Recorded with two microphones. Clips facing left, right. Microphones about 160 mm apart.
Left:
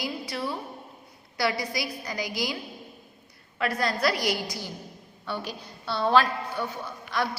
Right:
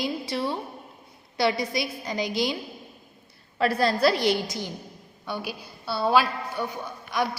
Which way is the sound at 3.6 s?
30° right (ahead or behind).